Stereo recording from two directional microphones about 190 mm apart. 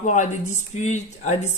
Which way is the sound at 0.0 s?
40° left (ahead or behind).